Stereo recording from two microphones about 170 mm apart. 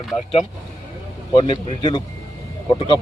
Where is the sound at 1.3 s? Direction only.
30° left (ahead or behind).